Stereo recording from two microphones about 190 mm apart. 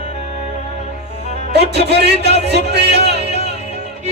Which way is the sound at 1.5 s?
60° right (ahead or behind).